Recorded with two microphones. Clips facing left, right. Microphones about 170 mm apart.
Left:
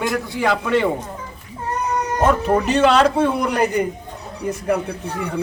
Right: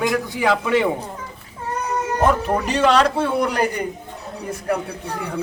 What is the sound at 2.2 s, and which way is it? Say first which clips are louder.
Speech: left 2 dB; centre (ahead or behind).